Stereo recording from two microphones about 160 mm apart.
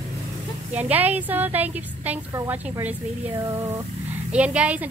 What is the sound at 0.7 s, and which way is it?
A woman's voice, 10° right (ahead or behind).